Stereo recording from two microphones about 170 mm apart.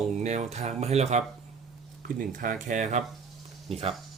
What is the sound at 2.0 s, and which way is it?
Speech, 55° right (ahead or behind).